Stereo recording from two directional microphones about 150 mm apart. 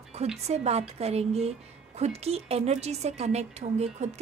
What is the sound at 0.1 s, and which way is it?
Speech, 45° right (ahead or behind).